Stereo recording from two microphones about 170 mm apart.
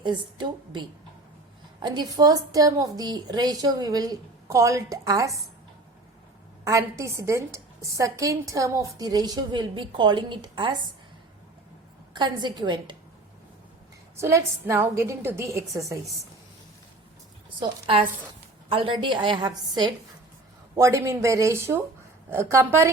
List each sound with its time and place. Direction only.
0.0 s a woman's voice: 25° right (ahead or behind)
6.7 s a woman's voice: 20° right (ahead or behind)
12.1 s a woman's voice: 25° right (ahead or behind)
14.2 s a woman's voice: 15° right (ahead or behind)
17.6 s a woman's voice: 30° right (ahead or behind); by 22.9 s 15° right (ahead or behind)